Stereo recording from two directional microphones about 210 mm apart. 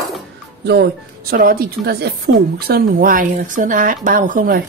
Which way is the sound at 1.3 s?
45° right (ahead or behind).